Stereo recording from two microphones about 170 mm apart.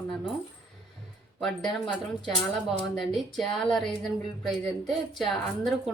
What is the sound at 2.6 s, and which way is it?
Speech, centre (ahead or behind).